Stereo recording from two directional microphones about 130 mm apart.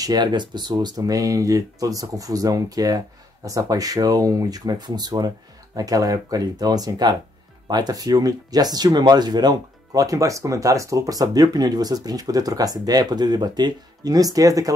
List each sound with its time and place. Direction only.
0.0 s speech: 30° right (ahead or behind)